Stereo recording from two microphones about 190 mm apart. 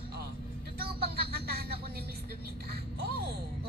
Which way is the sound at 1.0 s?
55° right (ahead or behind).